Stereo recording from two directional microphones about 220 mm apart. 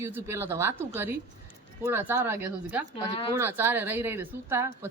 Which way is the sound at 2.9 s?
25° left (ahead or behind).